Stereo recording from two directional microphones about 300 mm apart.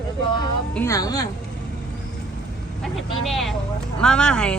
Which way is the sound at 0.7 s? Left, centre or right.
Centre.